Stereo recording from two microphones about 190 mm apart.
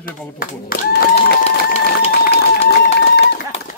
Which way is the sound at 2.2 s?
60° left (ahead or behind).